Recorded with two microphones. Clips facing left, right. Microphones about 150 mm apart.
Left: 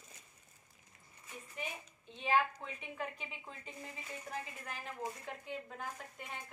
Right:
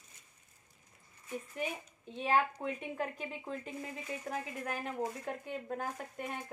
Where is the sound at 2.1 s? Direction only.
50° right (ahead or behind).